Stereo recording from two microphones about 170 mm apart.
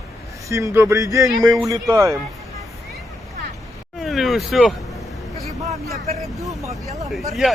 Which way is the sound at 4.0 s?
Centre (ahead or behind).